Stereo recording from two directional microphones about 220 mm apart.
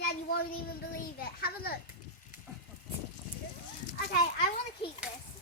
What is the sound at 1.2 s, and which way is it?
Speech, 45° left (ahead or behind).